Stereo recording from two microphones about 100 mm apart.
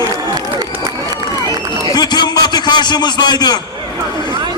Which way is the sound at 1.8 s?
45° left (ahead or behind).